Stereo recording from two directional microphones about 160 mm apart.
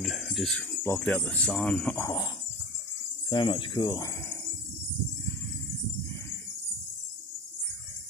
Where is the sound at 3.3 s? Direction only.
30° left (ahead or behind).